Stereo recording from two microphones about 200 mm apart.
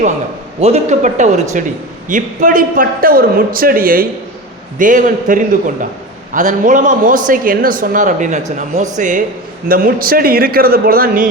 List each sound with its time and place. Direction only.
0.6 s a woman's voice: 35° right (ahead or behind)